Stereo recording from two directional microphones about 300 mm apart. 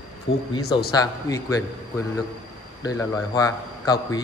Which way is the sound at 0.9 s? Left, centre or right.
Centre.